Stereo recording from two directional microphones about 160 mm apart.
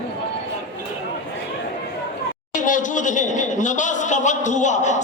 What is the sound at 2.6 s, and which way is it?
Speech, 55° left (ahead or behind).